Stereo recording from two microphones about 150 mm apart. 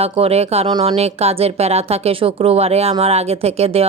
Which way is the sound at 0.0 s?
40° right (ahead or behind).